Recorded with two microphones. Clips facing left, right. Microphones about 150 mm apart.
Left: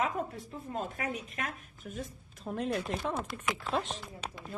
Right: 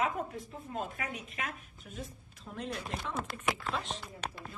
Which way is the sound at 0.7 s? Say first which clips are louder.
Left 3 dB; 40° left (ahead or behind).